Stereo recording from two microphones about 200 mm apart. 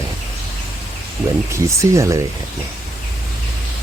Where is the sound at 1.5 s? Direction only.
15° right (ahead or behind).